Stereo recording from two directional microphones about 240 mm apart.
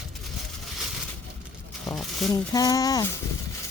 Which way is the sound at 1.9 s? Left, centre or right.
Centre.